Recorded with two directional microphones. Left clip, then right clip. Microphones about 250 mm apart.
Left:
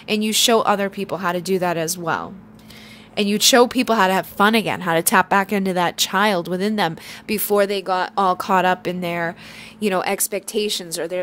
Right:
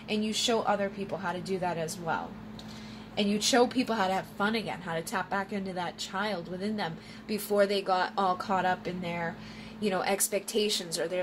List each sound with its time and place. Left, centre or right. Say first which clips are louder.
0.1 s speech: left 12 dB; left